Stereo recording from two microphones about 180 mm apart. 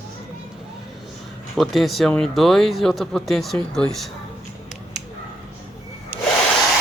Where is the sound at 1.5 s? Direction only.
Centre (ahead or behind).